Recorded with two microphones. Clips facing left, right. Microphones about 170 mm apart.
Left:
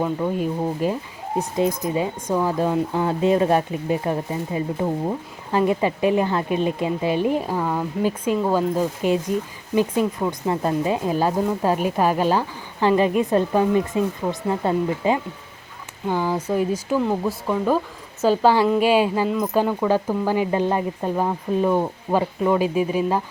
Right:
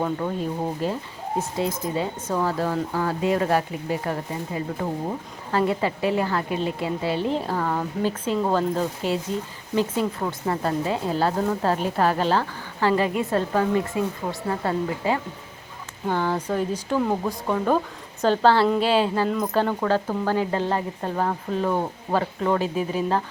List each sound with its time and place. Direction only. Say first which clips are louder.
0.0 s speech: left 3 dB; 10° left (ahead or behind)
18.2 s speech: left 1 dB; 10° left (ahead or behind)